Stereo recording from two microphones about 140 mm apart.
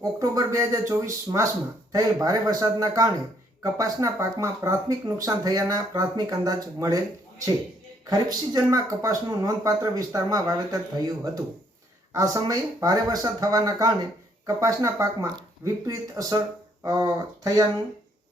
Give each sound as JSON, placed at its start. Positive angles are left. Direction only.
{"t": 0.0, "sound": "speech", "side_deg": -25}
{"t": 8.1, "sound": "speech", "side_deg": -25}